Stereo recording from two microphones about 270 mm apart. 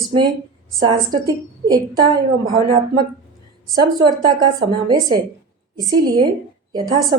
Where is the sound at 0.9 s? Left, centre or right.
Centre.